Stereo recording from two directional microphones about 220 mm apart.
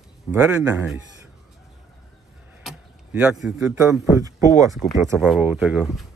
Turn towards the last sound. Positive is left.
turn(degrees=-5)  # may be behind; listen again after turning